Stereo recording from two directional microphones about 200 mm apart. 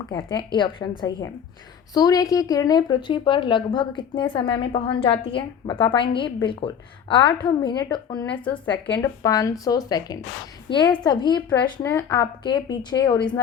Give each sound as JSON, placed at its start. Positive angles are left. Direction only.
{"t": 0.1, "sound": "a woman's voice", "side_deg": 20}
{"t": 8.3, "sound": "a woman's voice", "side_deg": 5}